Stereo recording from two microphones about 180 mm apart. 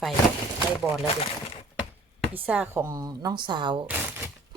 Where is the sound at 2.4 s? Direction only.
10° right (ahead or behind); by 3.8 s 25° right (ahead or behind).